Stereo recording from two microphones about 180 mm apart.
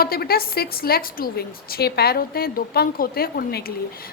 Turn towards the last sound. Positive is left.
turn(degrees=60)  # may be behind; listen again after turning